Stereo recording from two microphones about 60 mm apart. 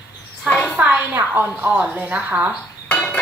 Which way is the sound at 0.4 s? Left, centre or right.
Centre.